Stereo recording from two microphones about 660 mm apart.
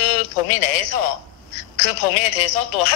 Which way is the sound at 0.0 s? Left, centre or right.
Left.